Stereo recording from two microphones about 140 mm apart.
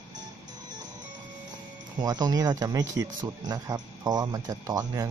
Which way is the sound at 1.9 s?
30° right (ahead or behind).